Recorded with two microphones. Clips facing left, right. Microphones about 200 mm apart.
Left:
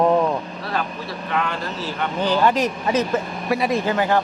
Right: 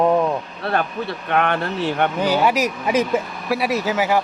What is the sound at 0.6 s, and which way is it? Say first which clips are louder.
Speech: right 4 dB; 60° right (ahead or behind).